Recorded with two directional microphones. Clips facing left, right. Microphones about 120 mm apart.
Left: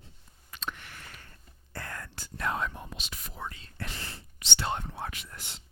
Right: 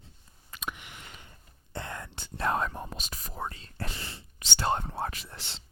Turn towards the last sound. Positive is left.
turn(degrees=-35)  # may be behind; listen again after turning